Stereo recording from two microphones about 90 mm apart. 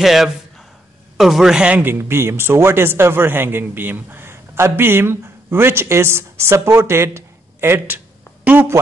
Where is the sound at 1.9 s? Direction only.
25° right (ahead or behind).